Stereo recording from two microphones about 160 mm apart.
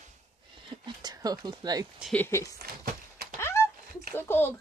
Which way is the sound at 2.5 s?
70° right (ahead or behind).